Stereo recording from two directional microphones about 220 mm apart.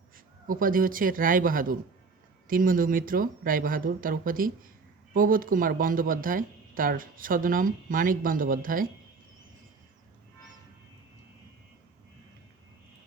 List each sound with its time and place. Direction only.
0.4 s speech: 40° right (ahead or behind)